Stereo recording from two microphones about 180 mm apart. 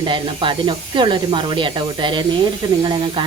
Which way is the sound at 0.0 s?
25° right (ahead or behind).